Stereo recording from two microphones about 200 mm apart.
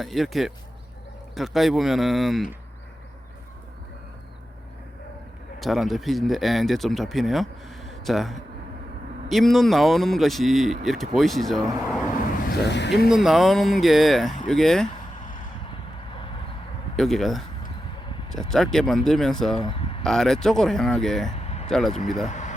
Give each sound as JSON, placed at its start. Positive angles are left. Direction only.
{"t": 0.0, "sound": "speech", "side_deg": 0}
{"t": 5.5, "sound": "speech", "side_deg": 0}
{"t": 12.5, "sound": "speech", "side_deg": 60}
{"t": 13.1, "sound": "speech", "side_deg": 0}
{"t": 17.0, "sound": "speech", "side_deg": 0}
{"t": 19.6, "sound": "a sound", "side_deg": 25}
{"t": 20.1, "sound": "speech", "side_deg": 0}
{"t": 22.3, "sound": "a sound", "side_deg": 35}